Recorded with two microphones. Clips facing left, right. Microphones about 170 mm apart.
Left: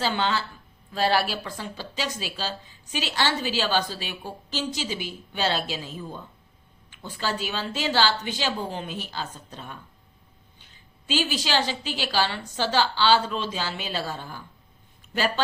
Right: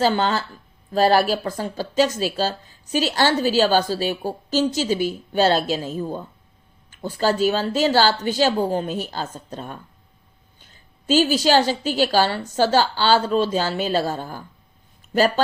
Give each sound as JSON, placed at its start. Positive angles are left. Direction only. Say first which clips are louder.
{"t": 0.0, "sound": "a woman's voice", "louder": "right 6 dB", "side_deg": -45}